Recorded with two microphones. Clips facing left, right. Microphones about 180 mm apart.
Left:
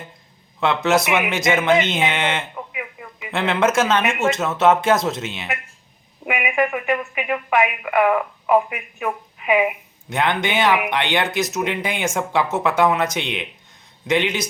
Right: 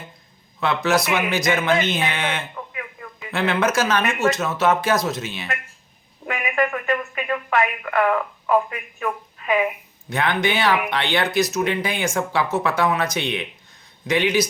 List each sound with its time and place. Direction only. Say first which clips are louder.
0.6 s speech: left 2 dB; 25° left (ahead or behind)
2.7 s radio: left 2 dB; 10° left (ahead or behind)
3.3 s speech: left 2 dB; 25° left (ahead or behind)